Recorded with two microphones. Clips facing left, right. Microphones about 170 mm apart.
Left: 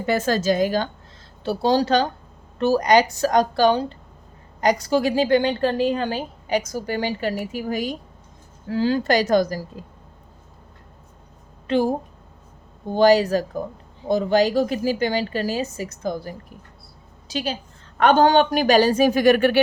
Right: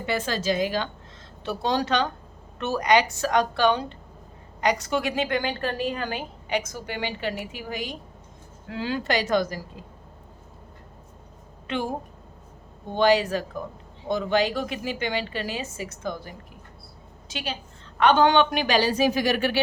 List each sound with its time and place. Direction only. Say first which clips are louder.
0.0 s a woman's voice: left 6 dB; 45° left (ahead or behind)
1.5 s a woman's voice: left 6 dB; 35° left (ahead or behind)
11.7 s a woman's voice: left 8 dB; 35° left (ahead or behind); by 19.6 s 55° left (ahead or behind)